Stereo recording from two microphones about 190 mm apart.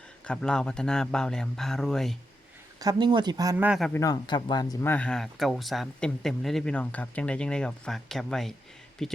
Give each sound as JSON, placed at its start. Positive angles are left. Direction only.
{"t": 0.3, "sound": "speech", "side_deg": 5}
{"t": 2.8, "sound": "speech", "side_deg": -25}
{"t": 3.9, "sound": "speech", "side_deg": 20}